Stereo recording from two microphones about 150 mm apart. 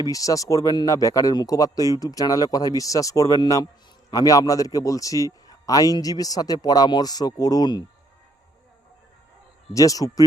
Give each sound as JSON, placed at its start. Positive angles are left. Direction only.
{"t": 0.0, "sound": "a man's voice", "side_deg": 25}
{"t": 9.7, "sound": "a man's voice", "side_deg": 25}